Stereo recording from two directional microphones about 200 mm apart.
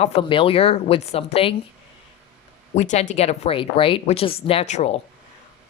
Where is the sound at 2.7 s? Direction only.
35° left (ahead or behind).